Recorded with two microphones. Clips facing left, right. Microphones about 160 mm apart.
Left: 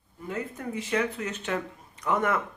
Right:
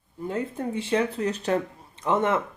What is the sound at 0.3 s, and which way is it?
Speech, 30° right (ahead or behind).